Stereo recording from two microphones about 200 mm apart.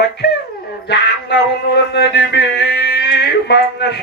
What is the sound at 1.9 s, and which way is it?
Music, 60° left (ahead or behind).